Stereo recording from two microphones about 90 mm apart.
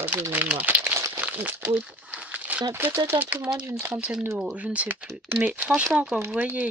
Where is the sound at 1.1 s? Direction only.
20° right (ahead or behind).